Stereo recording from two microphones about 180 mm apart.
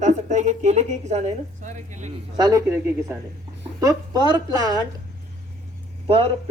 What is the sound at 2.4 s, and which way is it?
A woman's voice, 20° right (ahead or behind).